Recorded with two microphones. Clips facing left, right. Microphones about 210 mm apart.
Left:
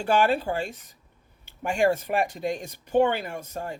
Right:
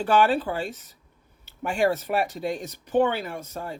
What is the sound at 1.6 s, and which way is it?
Speech, 45° left (ahead or behind).